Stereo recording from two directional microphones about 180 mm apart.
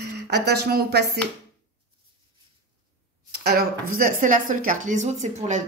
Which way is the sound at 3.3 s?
65° right (ahead or behind).